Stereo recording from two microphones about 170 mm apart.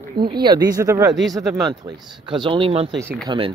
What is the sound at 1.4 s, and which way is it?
Speech, centre (ahead or behind).